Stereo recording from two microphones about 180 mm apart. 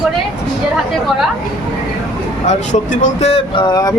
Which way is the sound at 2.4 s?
45° left (ahead or behind).